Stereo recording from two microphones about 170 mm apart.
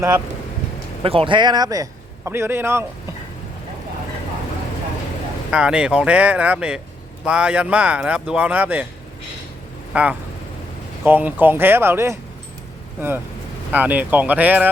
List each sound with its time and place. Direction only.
1.0 s a man's voice: 30° right (ahead or behind); by 2.8 s 15° right (ahead or behind)
5.5 s speech: 5° right (ahead or behind)
9.9 s speech: 10° right (ahead or behind)